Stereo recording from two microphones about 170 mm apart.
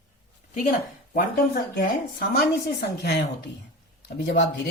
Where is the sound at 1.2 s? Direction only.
60° left (ahead or behind).